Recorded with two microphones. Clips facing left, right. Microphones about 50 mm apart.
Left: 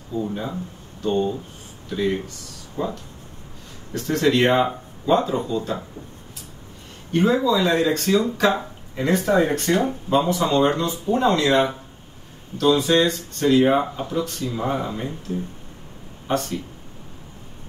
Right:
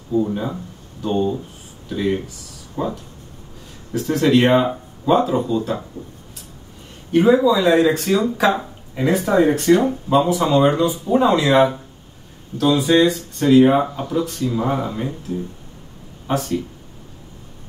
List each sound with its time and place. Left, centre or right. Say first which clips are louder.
0.2 s speech: right 5 dB; centre
7.1 s speech: right 5 dB; centre
15.3 s speech: even; left
16.3 s speech: right 2 dB; centre